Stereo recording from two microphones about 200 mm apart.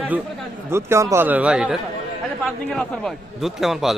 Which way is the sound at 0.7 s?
15° right (ahead or behind).